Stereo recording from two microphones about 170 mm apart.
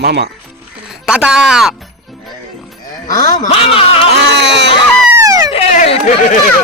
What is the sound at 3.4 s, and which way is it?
Speech, 35° left (ahead or behind).